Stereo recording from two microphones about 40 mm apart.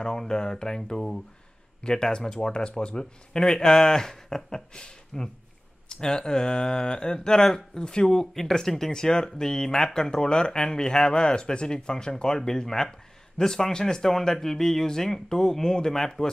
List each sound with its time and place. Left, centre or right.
0.0 s speech: centre